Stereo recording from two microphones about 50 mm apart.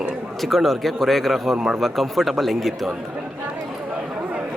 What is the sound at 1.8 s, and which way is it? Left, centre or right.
A woman's voice, centre.